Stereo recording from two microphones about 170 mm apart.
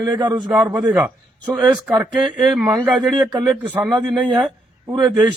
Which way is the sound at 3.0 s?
Centre (ahead or behind).